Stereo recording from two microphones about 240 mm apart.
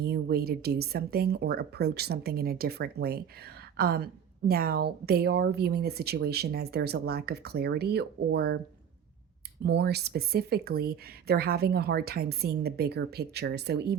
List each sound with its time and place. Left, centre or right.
0.0 s a woman's voice: right
9.6 s a woman's voice: right